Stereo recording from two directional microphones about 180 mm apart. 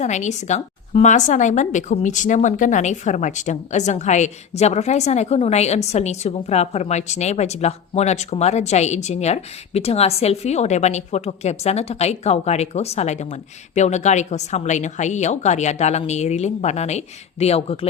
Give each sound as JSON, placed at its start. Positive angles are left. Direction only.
{"t": 0.0, "sound": "a woman's voice", "side_deg": 40}